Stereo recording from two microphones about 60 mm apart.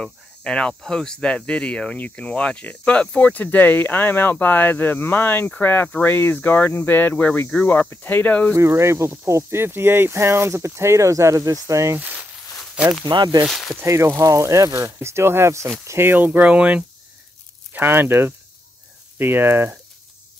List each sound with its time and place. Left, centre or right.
0.0 s speech: centre
3.3 s speech: left
8.5 s speech: right
12.0 s a sound: right
13.5 s speech: centre
13.8 s speech: right
14.1 s speech: right
14.4 s speech: right
16.0 s speech: right
16.3 s speech: centre
17.7 s speech: right